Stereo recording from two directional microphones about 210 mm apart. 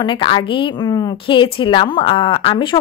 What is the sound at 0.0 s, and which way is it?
A woman's voice, 25° left (ahead or behind).